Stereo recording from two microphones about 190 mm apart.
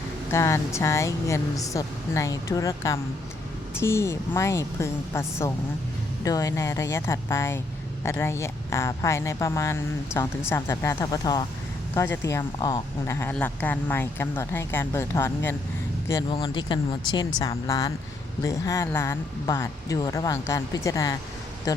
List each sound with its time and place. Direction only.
0.3 s speech: 15° left (ahead or behind)
16.3 s speech: 25° left (ahead or behind)